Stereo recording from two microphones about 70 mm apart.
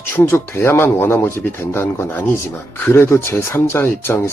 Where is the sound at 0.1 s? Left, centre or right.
Left.